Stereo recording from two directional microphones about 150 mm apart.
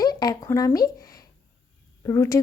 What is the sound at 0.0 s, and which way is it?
A woman's voice, 25° left (ahead or behind).